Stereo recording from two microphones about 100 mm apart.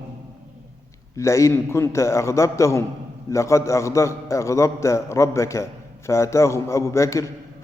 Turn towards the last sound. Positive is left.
turn(degrees=30)  # may be behind; listen again after turning